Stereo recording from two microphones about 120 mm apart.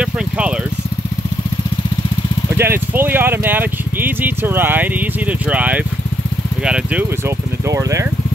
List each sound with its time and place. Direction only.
2.5 s speech: 20° right (ahead or behind)
7.6 s speech: 25° right (ahead or behind)